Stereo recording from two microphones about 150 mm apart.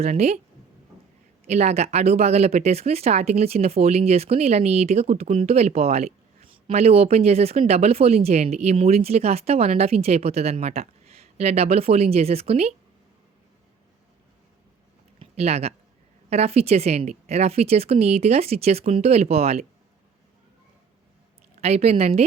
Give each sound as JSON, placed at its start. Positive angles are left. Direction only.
{"t": 0.0, "sound": "speech", "side_deg": -45}
{"t": 1.5, "sound": "speech", "side_deg": -45}
{"t": 15.2, "sound": "a sound", "side_deg": -45}
{"t": 16.3, "sound": "speech", "side_deg": -45}
{"t": 21.6, "sound": "speech", "side_deg": -45}